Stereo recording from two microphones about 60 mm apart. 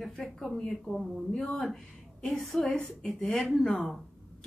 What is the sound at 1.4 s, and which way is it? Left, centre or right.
A woman's voice, centre.